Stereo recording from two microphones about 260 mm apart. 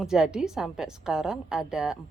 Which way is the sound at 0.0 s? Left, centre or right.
Centre.